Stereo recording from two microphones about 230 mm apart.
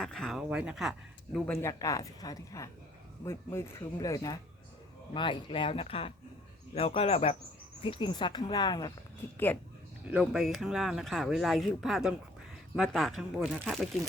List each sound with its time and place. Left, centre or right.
0.0 s speech: centre
10.1 s speech: centre